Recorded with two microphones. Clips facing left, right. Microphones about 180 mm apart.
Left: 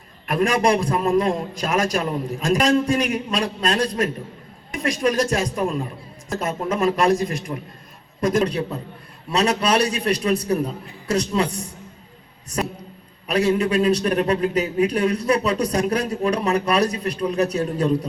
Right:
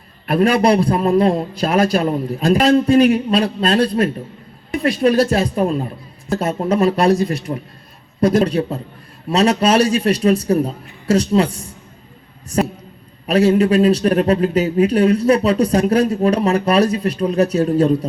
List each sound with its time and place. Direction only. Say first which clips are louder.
0.3 s a man's voice: right 5 dB; 30° right (ahead or behind)
13.3 s a man's voice: right 6 dB; 30° right (ahead or behind)